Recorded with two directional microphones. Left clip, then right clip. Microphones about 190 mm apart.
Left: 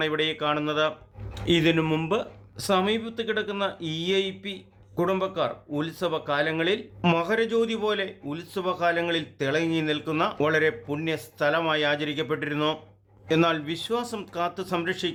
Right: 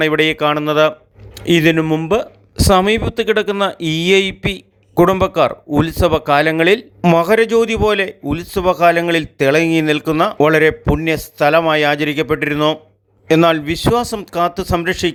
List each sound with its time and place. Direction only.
0.0 s speech: 40° right (ahead or behind)
1.8 s speech: 20° right (ahead or behind)
2.0 s speech: 35° right (ahead or behind)